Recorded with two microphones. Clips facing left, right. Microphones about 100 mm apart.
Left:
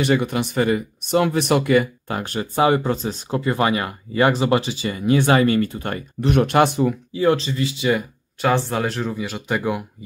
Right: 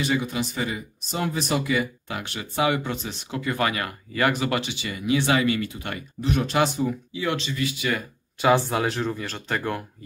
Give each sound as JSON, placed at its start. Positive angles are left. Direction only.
{"t": 0.0, "sound": "speech", "side_deg": 60}
{"t": 6.2, "sound": "speech", "side_deg": 60}
{"t": 7.2, "sound": "speech", "side_deg": 35}
{"t": 8.4, "sound": "speech", "side_deg": -5}